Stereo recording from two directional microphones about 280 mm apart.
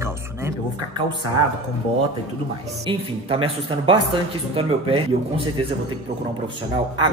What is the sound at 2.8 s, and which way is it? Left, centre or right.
Speech, centre.